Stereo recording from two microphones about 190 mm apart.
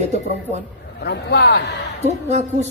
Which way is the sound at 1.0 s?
60° left (ahead or behind).